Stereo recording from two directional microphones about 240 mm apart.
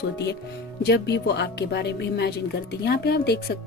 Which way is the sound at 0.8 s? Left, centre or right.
Left.